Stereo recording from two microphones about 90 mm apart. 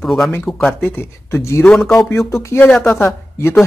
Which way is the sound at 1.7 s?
5° left (ahead or behind).